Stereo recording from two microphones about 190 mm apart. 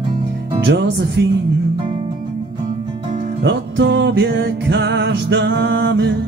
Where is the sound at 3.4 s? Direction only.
70° right (ahead or behind).